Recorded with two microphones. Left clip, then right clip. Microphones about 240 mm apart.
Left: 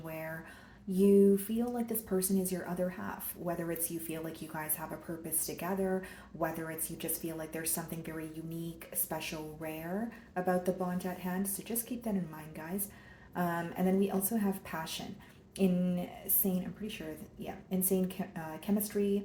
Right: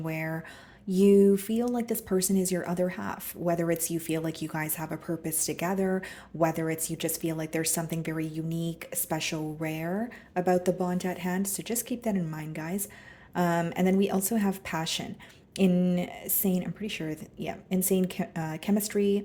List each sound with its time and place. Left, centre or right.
0.0 s speech: right